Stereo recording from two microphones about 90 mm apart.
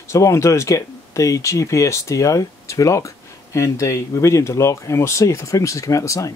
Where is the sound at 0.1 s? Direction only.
35° left (ahead or behind).